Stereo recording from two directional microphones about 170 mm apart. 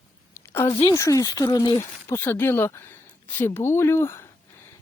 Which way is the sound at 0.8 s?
20° left (ahead or behind).